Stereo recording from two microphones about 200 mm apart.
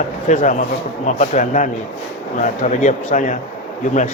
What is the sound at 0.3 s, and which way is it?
Speech, 35° left (ahead or behind).